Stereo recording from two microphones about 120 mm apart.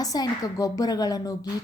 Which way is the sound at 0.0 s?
30° left (ahead or behind).